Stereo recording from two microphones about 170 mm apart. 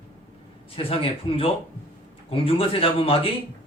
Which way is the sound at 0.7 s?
30° left (ahead or behind).